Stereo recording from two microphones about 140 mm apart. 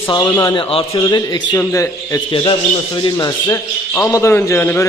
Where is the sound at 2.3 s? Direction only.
40° left (ahead or behind); by 4.8 s 15° left (ahead or behind).